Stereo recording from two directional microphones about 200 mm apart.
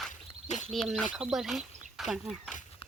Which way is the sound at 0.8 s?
Centre (ahead or behind).